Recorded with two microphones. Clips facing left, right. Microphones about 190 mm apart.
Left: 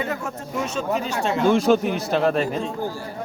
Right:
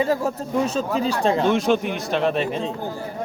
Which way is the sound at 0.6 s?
35° right (ahead or behind).